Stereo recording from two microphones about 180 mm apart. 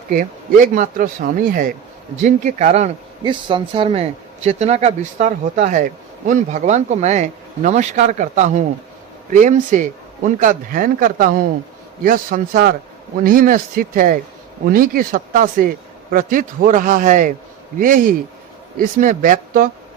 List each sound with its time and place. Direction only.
0.1 s a man's voice: 50° right (ahead or behind)